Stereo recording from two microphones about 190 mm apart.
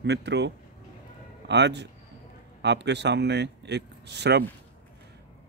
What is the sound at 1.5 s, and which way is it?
Speech, 65° right (ahead or behind).